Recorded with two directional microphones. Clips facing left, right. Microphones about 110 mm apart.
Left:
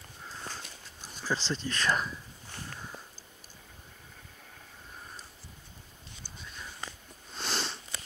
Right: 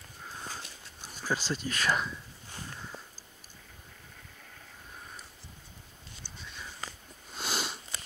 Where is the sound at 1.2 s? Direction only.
10° right (ahead or behind).